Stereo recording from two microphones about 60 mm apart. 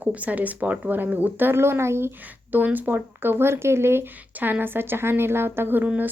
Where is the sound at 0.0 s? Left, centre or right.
Right.